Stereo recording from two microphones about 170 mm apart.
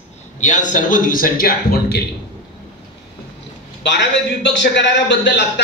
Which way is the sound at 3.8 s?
90° left.